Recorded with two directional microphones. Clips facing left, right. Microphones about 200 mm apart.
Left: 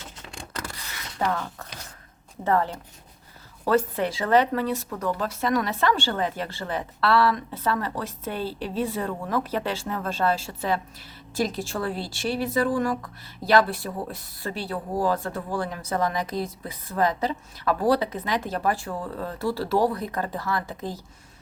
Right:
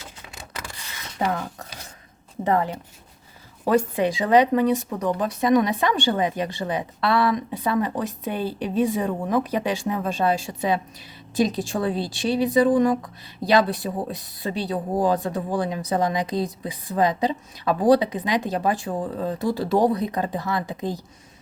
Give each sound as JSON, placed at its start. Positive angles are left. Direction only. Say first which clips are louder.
{"t": 0.2, "sound": "vehicle", "louder": "left 3 dB", "side_deg": -5}
{"t": 1.2, "sound": "a woman's voice", "louder": "right 2 dB", "side_deg": -15}